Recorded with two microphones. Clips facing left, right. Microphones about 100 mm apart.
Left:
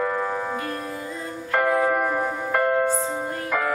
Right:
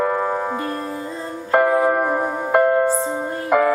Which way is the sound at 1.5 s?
30° right (ahead or behind).